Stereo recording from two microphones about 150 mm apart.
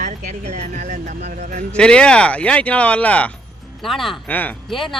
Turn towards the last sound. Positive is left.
turn(degrees=0)  # may be behind; listen again after turning